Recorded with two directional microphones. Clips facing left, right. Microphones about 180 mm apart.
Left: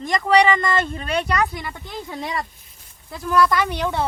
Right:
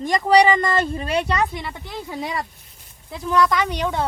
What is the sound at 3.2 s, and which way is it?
Speech, 20° right (ahead or behind).